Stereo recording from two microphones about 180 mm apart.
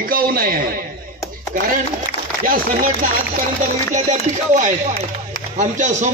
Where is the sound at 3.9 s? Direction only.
45° right (ahead or behind).